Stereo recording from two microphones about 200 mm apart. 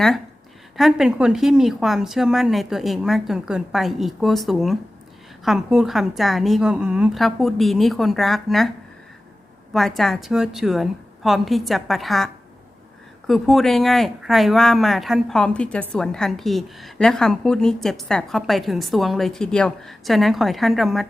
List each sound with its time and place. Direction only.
0.8 s speech: centre (ahead or behind)
9.7 s speech: centre (ahead or behind)